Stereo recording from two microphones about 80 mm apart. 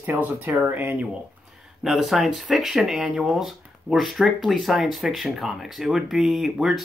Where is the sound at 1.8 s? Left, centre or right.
Centre.